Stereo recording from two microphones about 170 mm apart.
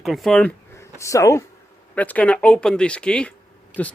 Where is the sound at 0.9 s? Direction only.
20° left (ahead or behind).